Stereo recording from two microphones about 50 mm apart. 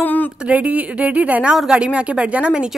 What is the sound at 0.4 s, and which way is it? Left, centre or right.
A woman's voice, right.